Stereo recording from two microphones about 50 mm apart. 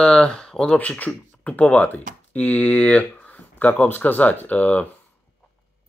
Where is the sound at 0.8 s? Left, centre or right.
Left.